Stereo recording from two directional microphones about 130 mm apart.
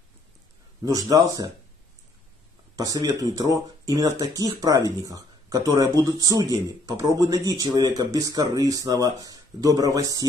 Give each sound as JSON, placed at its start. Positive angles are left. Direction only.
{"t": 0.8, "sound": "speech", "side_deg": -30}
{"t": 2.7, "sound": "speech", "side_deg": -25}